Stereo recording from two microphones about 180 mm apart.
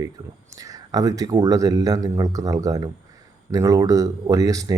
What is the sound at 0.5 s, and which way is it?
Speech, 20° right (ahead or behind).